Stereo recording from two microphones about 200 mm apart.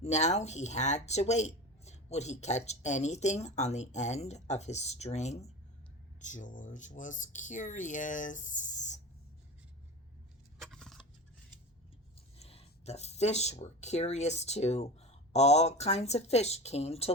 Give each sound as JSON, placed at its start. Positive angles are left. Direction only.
{"t": 0.0, "sound": "speech", "side_deg": 35}
{"t": 10.6, "sound": "a sound", "side_deg": 0}
{"t": 12.4, "sound": "speech", "side_deg": 30}